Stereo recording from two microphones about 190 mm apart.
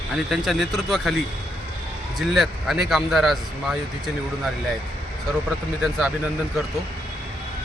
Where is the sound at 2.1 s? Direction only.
Centre (ahead or behind).